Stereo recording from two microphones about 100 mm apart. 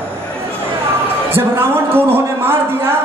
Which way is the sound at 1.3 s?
25° right (ahead or behind).